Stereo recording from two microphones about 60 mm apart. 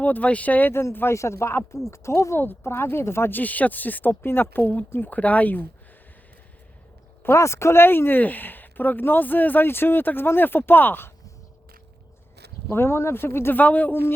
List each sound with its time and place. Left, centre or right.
0.0 s speech: left
0.7 s speech: left
2.4 s speech: left
7.3 s speech: left
12.7 s speech: left
13.6 s speech: left